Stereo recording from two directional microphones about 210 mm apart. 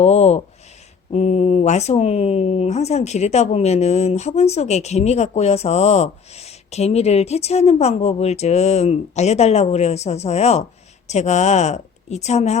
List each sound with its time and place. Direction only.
0.0 s speech: 30° left (ahead or behind)